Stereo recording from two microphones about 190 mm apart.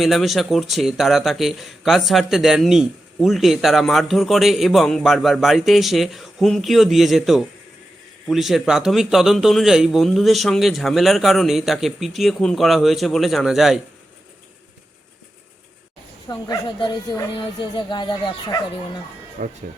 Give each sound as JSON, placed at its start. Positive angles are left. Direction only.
{"t": 0.0, "sound": "a man's voice", "side_deg": 0}
{"t": 16.3, "sound": "speech", "side_deg": 20}
{"t": 19.4, "sound": "speech", "side_deg": -40}